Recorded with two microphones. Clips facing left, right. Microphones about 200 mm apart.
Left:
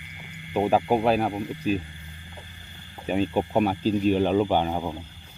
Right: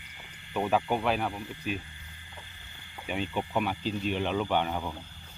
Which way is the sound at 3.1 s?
40° left (ahead or behind).